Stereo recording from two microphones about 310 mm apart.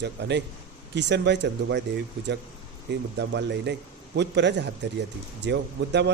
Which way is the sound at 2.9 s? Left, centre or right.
Right.